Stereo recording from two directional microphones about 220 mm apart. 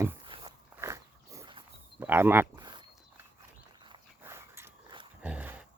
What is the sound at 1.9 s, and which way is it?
Speech, 10° right (ahead or behind).